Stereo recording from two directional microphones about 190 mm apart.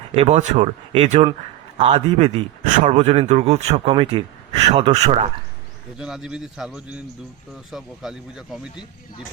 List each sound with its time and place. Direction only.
0.2 s speech: 35° right (ahead or behind)
6.0 s speech: 5° right (ahead or behind)